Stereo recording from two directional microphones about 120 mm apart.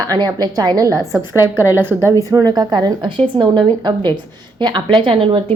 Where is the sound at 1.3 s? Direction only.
20° right (ahead or behind).